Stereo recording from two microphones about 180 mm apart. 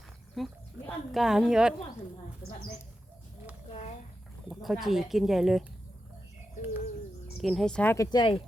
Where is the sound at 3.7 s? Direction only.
40° left (ahead or behind).